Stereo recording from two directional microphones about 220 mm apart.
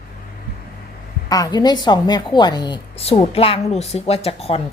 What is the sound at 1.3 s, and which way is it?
A woman's voice, 15° left (ahead or behind).